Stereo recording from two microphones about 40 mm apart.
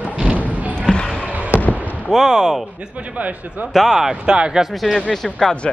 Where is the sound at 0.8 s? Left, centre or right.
Left.